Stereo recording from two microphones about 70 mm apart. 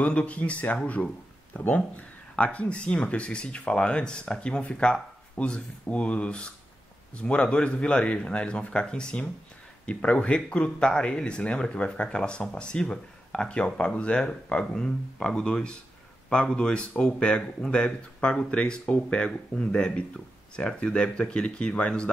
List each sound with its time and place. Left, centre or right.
0.0 s speech: centre